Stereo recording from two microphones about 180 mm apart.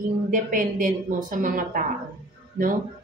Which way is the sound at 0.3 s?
50° right (ahead or behind).